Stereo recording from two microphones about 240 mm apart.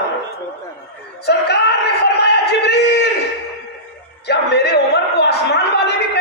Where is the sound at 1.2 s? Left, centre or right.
Left.